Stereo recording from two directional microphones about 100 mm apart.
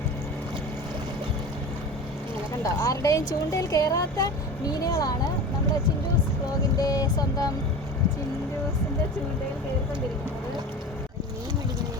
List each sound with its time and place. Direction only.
2.6 s speech: 30° left (ahead or behind)
6.7 s speech: 35° left (ahead or behind)